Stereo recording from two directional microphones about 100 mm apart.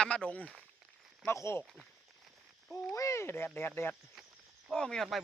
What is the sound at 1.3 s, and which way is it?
Speech, 25° left (ahead or behind).